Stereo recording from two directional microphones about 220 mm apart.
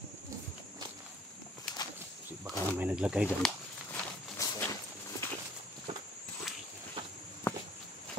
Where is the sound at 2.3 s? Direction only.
10° right (ahead or behind).